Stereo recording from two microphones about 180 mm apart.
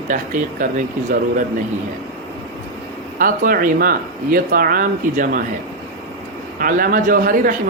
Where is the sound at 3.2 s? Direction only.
50° right (ahead or behind).